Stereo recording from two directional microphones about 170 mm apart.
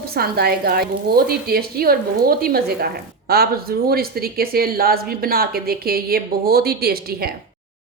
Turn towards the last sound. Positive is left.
turn(degrees=-65)  # may be behind; listen again after turning